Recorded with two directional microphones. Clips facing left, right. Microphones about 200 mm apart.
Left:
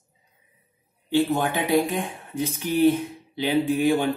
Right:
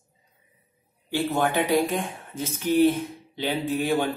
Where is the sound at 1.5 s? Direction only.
15° left (ahead or behind).